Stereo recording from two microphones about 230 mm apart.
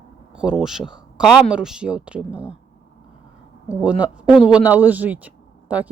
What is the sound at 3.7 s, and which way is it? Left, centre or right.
Speech, centre.